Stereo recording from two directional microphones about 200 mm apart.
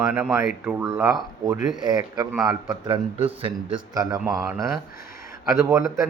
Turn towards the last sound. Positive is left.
turn(degrees=-15)  # may be behind; listen again after turning